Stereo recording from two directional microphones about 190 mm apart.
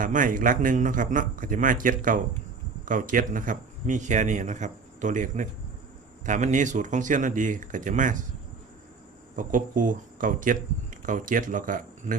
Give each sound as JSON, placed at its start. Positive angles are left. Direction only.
{"t": 0.0, "sound": "a man's voice", "side_deg": -45}
{"t": 9.3, "sound": "a man's voice", "side_deg": -45}